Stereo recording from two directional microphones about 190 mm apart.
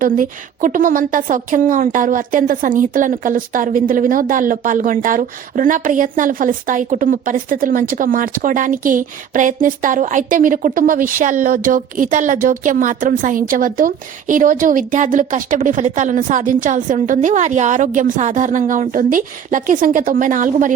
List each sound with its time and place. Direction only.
0.0 s a woman's voice: 45° right (ahead or behind)